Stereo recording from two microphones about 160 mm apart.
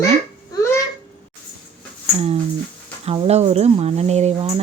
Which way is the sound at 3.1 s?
40° right (ahead or behind).